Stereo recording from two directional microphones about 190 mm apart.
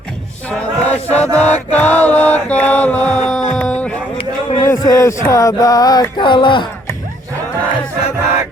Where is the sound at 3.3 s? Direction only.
5° left (ahead or behind); by 6.9 s 25° left (ahead or behind).